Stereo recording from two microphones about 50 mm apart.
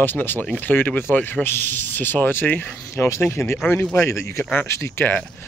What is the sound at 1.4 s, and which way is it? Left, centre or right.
Speech, left.